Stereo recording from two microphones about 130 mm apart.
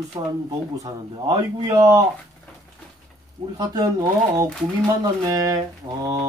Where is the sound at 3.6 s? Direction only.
30° right (ahead or behind).